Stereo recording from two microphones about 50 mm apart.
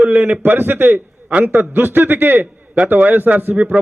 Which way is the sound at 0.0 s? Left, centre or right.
Right.